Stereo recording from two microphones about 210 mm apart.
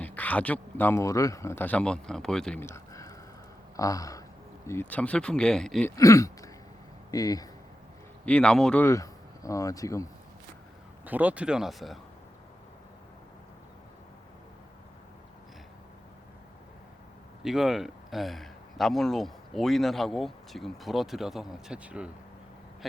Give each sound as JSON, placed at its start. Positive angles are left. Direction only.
{"t": 0.0, "sound": "speech", "side_deg": 5}
{"t": 3.8, "sound": "a sound", "side_deg": 15}
{"t": 4.6, "sound": "speech", "side_deg": 10}
{"t": 6.0, "sound": "a sound", "side_deg": 15}
{"t": 8.2, "sound": "speech", "side_deg": 5}
{"t": 11.0, "sound": "speech", "side_deg": -10}
{"t": 17.4, "sound": "speech", "side_deg": 0}